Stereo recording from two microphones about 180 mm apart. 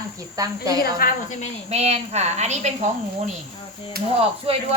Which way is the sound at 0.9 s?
50° left (ahead or behind).